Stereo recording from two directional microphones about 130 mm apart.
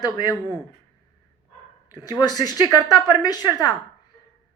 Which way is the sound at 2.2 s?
30° left (ahead or behind).